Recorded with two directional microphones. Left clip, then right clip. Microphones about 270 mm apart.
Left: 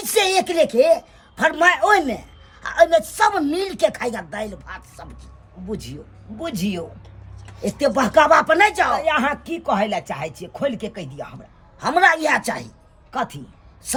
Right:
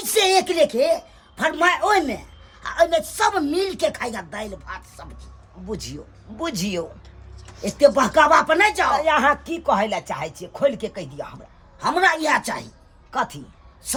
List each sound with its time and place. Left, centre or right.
0.0 s a man's voice: centre
5.6 s speech: centre
7.8 s a woman's voice: centre
9.0 s a woman's voice: centre